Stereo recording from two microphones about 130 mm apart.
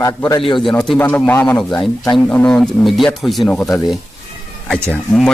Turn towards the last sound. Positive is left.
turn(degrees=5)  # may be behind; listen again after turning